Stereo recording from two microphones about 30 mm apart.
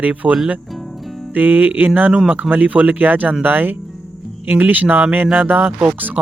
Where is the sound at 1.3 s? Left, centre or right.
Right.